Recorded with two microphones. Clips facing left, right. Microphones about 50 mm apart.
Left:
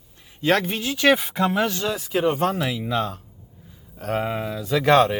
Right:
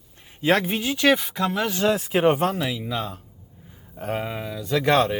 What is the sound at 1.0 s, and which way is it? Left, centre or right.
Speech, centre.